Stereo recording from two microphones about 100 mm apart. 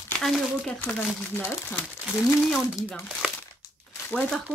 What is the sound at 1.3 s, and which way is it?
Speech, 20° left (ahead or behind).